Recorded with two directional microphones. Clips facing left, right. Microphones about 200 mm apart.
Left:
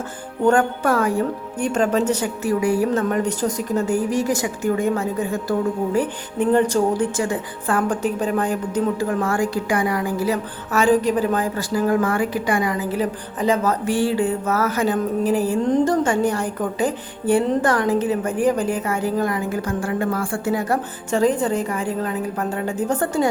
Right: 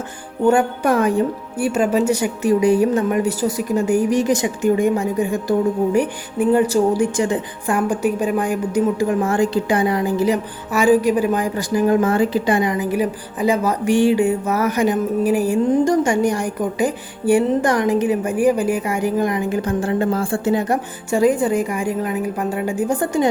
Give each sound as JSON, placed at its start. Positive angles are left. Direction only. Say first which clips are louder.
{"t": 0.4, "sound": "a woman's voice", "louder": "right 2 dB", "side_deg": -10}
{"t": 1.5, "sound": "a woman's voice", "louder": "right 2 dB", "side_deg": -10}
{"t": 21.1, "sound": "a woman's voice", "louder": "right 3 dB", "side_deg": -10}